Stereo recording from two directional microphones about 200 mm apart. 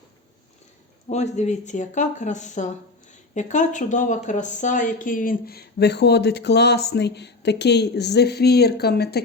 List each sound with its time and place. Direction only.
1.1 s speech: 35° left (ahead or behind); by 9.2 s 55° left (ahead or behind)